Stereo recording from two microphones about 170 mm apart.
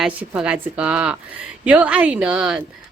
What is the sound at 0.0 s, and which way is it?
A woman's voice, 5° right (ahead or behind).